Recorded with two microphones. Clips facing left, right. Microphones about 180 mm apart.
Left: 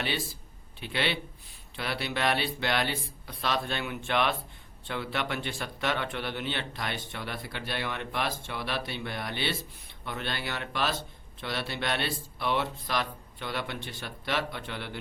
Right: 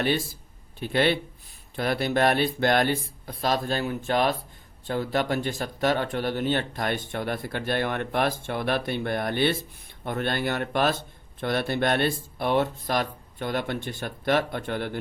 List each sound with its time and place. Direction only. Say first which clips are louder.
0.8 s speech: right 8 dB; 45° right (ahead or behind)